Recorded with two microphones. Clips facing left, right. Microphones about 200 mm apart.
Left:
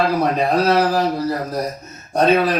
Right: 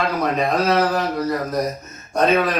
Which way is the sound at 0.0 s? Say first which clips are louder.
Left 3 dB; 30° left (ahead or behind).